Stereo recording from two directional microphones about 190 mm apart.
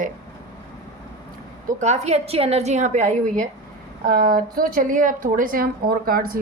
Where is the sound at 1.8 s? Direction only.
35° right (ahead or behind).